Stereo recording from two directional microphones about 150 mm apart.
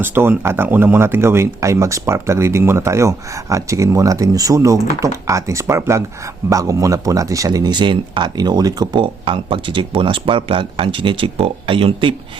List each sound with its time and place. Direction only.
0.0 s speech: 15° right (ahead or behind); by 12.1 s 35° right (ahead or behind)